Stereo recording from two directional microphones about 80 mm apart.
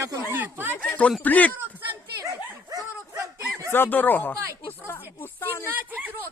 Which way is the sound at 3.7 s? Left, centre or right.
Left.